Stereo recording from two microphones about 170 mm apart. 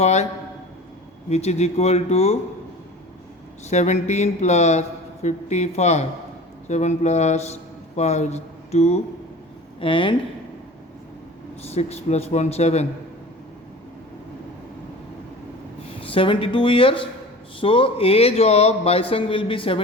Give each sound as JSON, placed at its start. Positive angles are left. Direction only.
{"t": 0.0, "sound": "a man's voice", "side_deg": 40}
{"t": 1.3, "sound": "a man's voice", "side_deg": 40}
{"t": 3.7, "sound": "a man's voice", "side_deg": 40}
{"t": 11.6, "sound": "a man's voice", "side_deg": 40}
{"t": 16.0, "sound": "a man's voice", "side_deg": 30}